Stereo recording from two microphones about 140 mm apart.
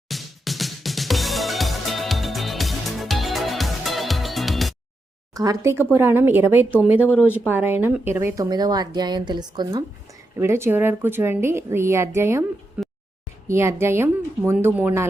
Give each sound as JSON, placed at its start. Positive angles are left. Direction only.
{"t": 0.1, "sound": "music", "side_deg": 0}
{"t": 5.3, "sound": "a woman's voice", "side_deg": -25}
{"t": 10.3, "sound": "a woman's voice", "side_deg": -20}
{"t": 13.5, "sound": "a woman's voice", "side_deg": -20}